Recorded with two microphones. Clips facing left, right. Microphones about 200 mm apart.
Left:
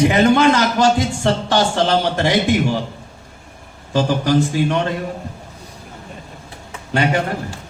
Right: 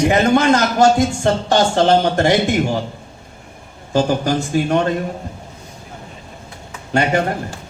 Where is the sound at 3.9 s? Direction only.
50° right (ahead or behind).